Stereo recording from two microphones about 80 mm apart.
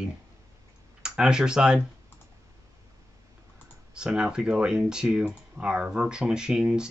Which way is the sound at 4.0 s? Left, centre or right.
Centre.